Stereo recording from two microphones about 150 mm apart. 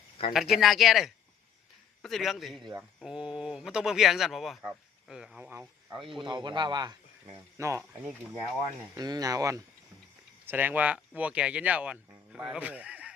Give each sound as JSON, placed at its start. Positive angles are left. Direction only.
{"t": 0.2, "sound": "speech", "side_deg": 40}
{"t": 0.5, "sound": "speech", "side_deg": 0}
{"t": 6.0, "sound": "speech", "side_deg": 0}
{"t": 6.2, "sound": "speech", "side_deg": -30}
{"t": 9.0, "sound": "speech", "side_deg": -25}